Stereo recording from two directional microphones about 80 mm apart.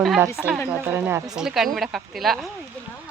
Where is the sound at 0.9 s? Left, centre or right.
Right.